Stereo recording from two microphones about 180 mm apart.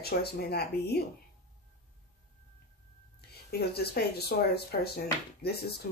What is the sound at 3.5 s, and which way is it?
Speech, 65° left (ahead or behind).